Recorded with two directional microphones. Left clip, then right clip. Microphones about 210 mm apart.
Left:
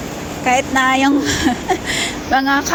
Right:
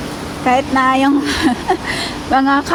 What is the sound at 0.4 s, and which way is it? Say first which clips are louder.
A woman's voice: right 1 dB; 15° right (ahead or behind).